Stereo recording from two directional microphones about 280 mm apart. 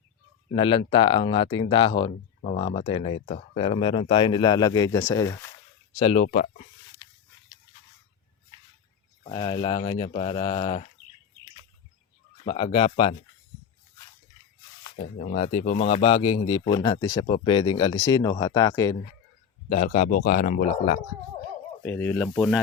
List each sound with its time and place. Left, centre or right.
0.5 s speech: centre
7.0 s pig: centre
9.2 s speech: centre
12.5 s speech: left
14.9 s speech: left
19.6 s speech: left
21.8 s speech: centre